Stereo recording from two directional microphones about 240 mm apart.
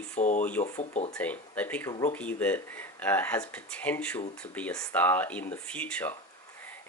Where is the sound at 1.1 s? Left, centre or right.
Centre.